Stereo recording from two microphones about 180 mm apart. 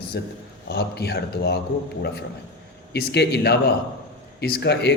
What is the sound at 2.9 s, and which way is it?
A man's voice, 70° left (ahead or behind).